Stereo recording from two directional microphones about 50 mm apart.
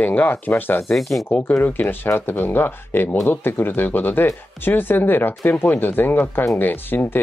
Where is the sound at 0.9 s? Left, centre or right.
Centre.